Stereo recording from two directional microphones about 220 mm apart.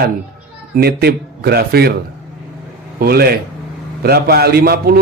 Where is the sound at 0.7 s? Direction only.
45° right (ahead or behind).